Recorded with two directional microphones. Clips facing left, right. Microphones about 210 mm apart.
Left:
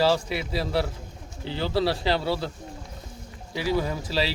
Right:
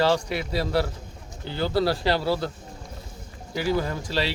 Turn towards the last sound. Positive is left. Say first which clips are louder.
# even
turn(degrees=0)  # may be behind; listen again after turning